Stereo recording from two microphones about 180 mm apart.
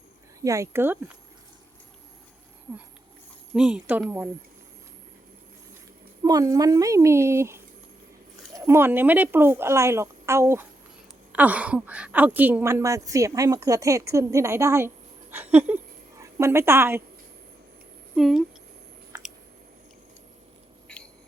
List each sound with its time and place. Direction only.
0.4 s speech: 15° right (ahead or behind)
3.5 s speech: 5° right (ahead or behind)
6.2 s a woman's voice: 20° right (ahead or behind)
18.1 s speech: 5° right (ahead or behind)
20.8 s a sound: 5° left (ahead or behind)